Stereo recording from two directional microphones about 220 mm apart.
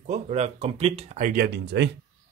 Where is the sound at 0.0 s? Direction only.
30° right (ahead or behind); by 1.9 s 50° right (ahead or behind).